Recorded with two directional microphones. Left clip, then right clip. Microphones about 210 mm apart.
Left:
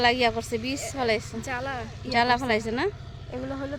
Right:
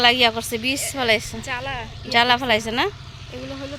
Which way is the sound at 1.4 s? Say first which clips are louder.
Right 3 dB; 35° left (ahead or behind).